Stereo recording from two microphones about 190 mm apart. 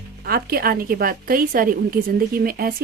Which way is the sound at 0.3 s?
55° right (ahead or behind).